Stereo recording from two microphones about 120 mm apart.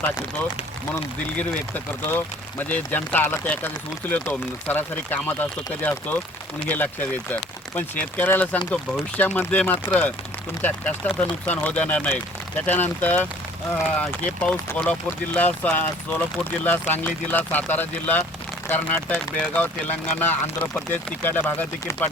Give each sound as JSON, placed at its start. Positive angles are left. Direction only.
{"t": 1.4, "sound": "speech", "side_deg": 15}